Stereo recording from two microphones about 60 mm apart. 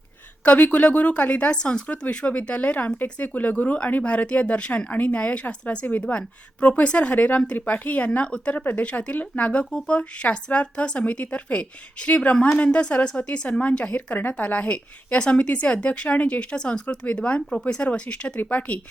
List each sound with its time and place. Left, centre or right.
0.4 s a woman's voice: left